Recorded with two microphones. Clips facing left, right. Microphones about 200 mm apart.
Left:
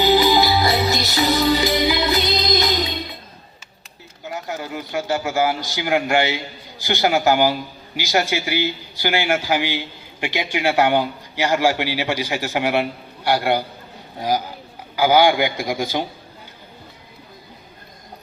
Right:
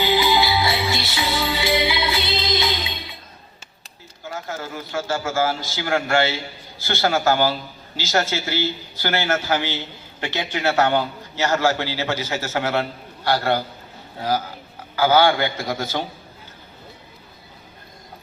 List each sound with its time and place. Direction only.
0.0 s music: 40° left (ahead or behind)
4.2 s a man's voice: 15° left (ahead or behind)